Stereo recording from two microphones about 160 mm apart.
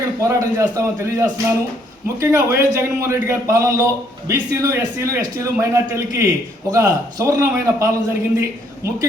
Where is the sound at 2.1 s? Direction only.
15° right (ahead or behind).